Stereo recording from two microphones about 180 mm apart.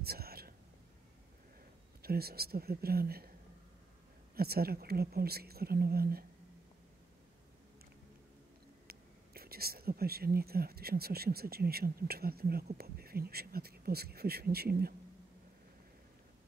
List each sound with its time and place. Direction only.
0.0 s whispering: 60° right (ahead or behind)
2.0 s speech: 60° right (ahead or behind)
4.4 s speech: 60° right (ahead or behind)
8.8 s speech: 60° right (ahead or behind)